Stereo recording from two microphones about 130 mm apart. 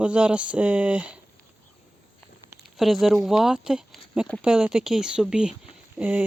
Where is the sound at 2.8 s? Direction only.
Centre (ahead or behind).